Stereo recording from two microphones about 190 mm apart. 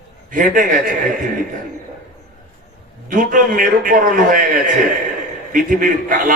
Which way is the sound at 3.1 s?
45° right (ahead or behind).